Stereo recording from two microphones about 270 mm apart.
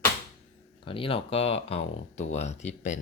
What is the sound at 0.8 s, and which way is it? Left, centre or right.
Speech, centre.